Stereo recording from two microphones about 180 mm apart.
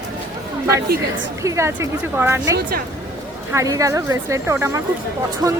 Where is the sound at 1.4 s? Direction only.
15° right (ahead or behind).